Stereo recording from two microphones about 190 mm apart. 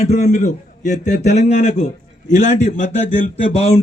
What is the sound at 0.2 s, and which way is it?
A man's voice, 40° left (ahead or behind).